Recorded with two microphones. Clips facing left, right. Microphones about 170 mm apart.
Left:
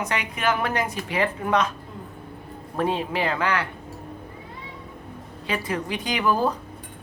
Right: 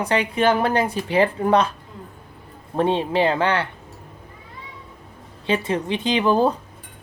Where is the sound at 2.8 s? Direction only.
30° right (ahead or behind).